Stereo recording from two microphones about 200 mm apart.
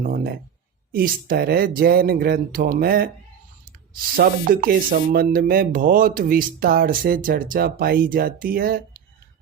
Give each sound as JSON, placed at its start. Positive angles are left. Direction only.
{"t": 0.0, "sound": "music", "side_deg": -45}
{"t": 4.2, "sound": "music", "side_deg": -45}